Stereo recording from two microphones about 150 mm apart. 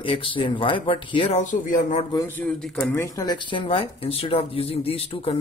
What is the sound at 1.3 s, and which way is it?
Speech, 50° left (ahead or behind).